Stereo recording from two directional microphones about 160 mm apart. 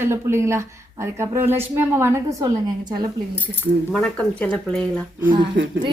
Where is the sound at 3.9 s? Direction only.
10° left (ahead or behind).